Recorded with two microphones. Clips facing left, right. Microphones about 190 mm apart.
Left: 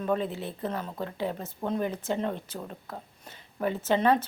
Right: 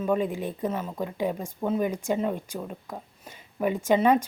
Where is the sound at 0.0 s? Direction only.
10° right (ahead or behind).